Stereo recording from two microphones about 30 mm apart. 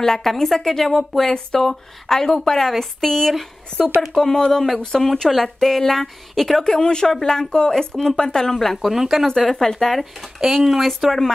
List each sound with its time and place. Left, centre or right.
0.0 s a woman's voice: centre
6.6 s speech: left
8.5 s a woman's voice: centre
8.8 s speech: centre
9.3 s a woman's voice: centre
9.9 s speech: centre
10.4 s speech: centre
11.1 s a woman's voice: centre